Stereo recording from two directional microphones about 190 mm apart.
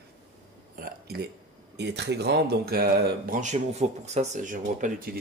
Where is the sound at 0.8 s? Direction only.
55° right (ahead or behind).